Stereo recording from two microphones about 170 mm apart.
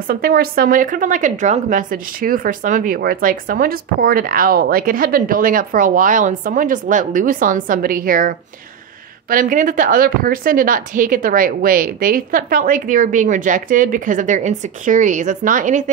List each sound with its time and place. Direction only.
0.1 s speech: 60° right (ahead or behind)